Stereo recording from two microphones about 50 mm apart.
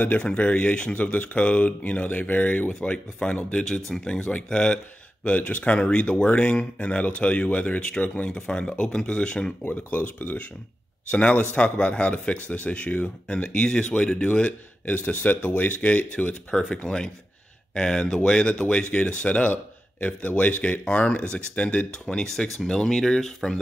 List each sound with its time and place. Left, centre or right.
0.2 s speech: left
2.7 s speech: centre
3.9 s speech: centre
5.2 s speech: left
9.7 s speech: left
21.9 s speech: centre